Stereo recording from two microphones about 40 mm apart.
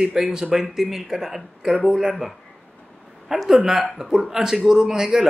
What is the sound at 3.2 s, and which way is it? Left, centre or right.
A woman's voice, centre.